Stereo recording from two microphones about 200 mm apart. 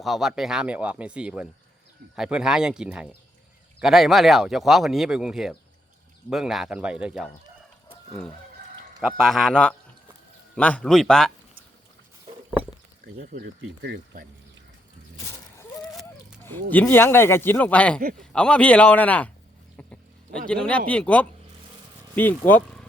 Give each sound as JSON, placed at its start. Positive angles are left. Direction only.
{"t": 0.0, "sound": "speech", "side_deg": 0}
{"t": 7.9, "sound": "chicken", "side_deg": 5}
{"t": 9.0, "sound": "speech", "side_deg": 0}
{"t": 13.1, "sound": "speech", "side_deg": -45}
{"t": 13.8, "sound": "speech", "side_deg": -55}
{"t": 15.8, "sound": "a sound", "side_deg": 5}
{"t": 16.6, "sound": "speech", "side_deg": 10}
{"t": 19.7, "sound": "a sound", "side_deg": 5}
{"t": 20.5, "sound": "speech", "side_deg": 5}